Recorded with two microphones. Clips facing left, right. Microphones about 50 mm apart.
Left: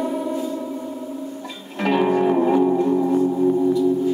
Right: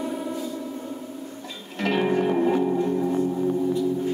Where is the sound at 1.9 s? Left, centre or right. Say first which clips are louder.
Left 5 dB; centre.